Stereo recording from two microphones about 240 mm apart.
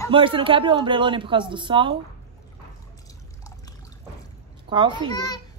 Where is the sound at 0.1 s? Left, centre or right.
Right.